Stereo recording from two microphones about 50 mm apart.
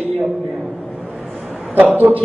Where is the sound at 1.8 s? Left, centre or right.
Right.